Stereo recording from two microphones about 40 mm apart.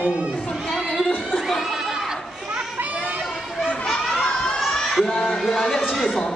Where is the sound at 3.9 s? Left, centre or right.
Left.